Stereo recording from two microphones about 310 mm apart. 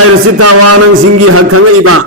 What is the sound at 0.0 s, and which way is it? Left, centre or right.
A man's voice, right.